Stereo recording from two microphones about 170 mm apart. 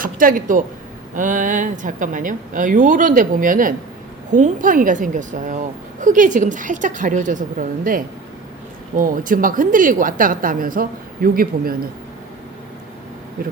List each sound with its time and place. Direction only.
0.0 s a woman's voice: 55° right (ahead or behind)